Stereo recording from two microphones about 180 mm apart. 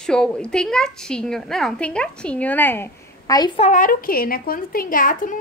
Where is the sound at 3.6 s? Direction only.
45° left (ahead or behind).